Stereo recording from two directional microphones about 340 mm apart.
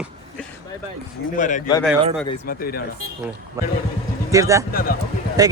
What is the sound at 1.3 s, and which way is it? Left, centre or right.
Speech, left.